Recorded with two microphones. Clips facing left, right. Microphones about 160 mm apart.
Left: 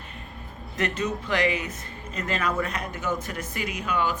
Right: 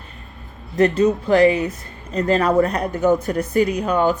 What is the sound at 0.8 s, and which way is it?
Speech, 35° right (ahead or behind).